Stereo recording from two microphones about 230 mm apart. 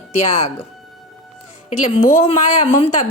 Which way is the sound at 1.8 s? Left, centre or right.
Left.